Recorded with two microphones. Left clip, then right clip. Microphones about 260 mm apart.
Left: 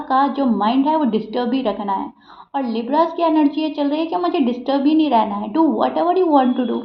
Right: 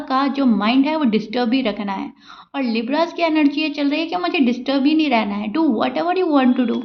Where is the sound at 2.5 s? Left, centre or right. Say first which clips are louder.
Left 1 dB; right.